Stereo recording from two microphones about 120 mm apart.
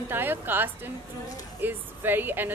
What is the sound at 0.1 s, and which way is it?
A man's voice, 15° right (ahead or behind).